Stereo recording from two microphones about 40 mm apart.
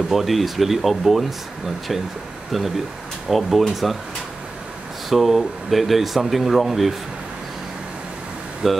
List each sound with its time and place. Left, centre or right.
0.1 s speech: centre
2.5 s speech: centre
5.1 s speech: centre
8.6 s speech: centre